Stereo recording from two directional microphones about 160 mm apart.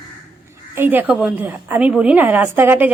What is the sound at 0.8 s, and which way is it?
Speech, 10° right (ahead or behind).